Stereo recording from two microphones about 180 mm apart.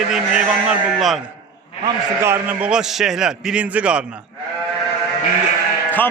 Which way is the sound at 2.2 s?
10° right (ahead or behind).